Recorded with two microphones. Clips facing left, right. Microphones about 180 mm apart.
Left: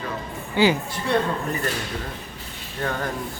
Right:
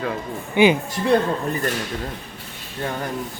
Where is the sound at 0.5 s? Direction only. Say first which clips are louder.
Right 4 dB; 20° right (ahead or behind).